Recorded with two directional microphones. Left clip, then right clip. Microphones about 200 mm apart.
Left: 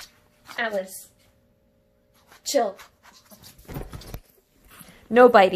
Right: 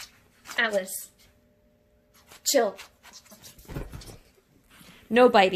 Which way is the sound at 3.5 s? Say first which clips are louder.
Left 1 dB; 10° left (ahead or behind).